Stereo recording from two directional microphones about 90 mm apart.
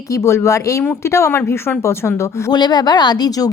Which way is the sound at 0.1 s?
30° left (ahead or behind).